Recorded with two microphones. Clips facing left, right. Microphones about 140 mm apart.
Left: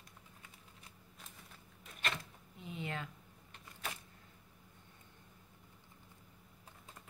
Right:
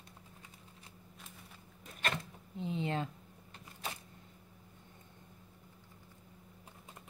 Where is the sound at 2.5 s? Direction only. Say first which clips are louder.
Right 7 dB; 30° right (ahead or behind).